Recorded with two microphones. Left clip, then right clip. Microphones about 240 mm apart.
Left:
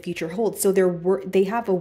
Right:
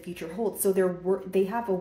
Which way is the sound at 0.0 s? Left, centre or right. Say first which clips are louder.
Left 7 dB; left.